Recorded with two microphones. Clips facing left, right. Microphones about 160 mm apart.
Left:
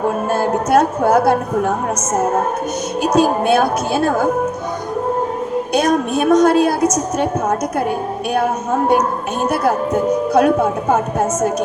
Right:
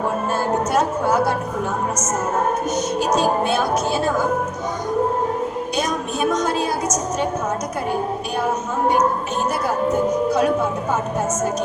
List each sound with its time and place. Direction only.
0.3 s music: 60° left (ahead or behind)
3.2 s a woman's voice: 60° left (ahead or behind)
5.7 s a woman's voice: 60° left (ahead or behind)
10.2 s a woman's voice: 60° left (ahead or behind)